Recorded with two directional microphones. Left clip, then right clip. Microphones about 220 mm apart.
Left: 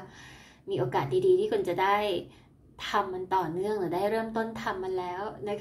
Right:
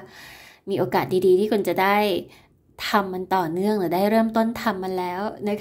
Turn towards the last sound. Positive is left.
turn(degrees=-50)  # may be behind; listen again after turning